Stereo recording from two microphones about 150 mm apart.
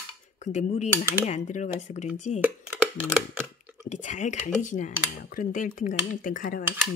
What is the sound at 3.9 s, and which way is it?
Speech, 55° left (ahead or behind).